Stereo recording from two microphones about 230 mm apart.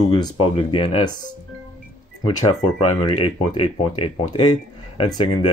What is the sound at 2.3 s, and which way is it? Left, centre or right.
Speech, centre.